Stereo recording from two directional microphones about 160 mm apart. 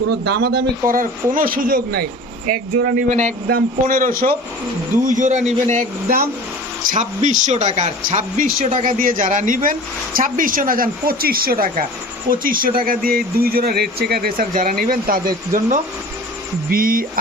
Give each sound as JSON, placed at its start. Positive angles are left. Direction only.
{"t": 0.3, "sound": "a man's voice", "side_deg": -90}
{"t": 3.1, "sound": "speech", "side_deg": -45}
{"t": 3.4, "sound": "speech", "side_deg": -65}
{"t": 5.0, "sound": "speech", "side_deg": -50}